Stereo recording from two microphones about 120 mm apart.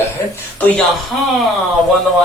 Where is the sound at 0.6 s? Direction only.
5° left (ahead or behind).